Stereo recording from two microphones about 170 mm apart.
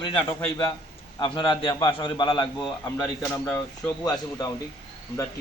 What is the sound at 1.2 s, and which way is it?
A man's voice, 30° left (ahead or behind).